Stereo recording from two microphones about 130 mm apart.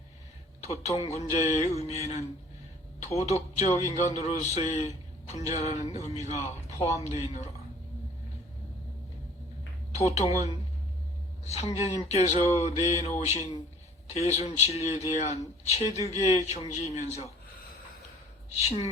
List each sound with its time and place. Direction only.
0.6 s a man's voice: 55° left (ahead or behind)
9.9 s a man's voice: 55° left (ahead or behind)
11.4 s a man's voice: 55° left (ahead or behind)